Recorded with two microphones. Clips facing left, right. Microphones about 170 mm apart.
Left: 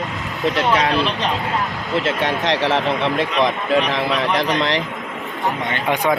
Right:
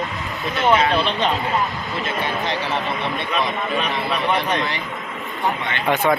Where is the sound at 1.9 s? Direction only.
90° left.